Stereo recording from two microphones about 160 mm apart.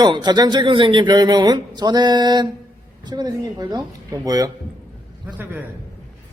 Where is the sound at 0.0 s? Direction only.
25° right (ahead or behind).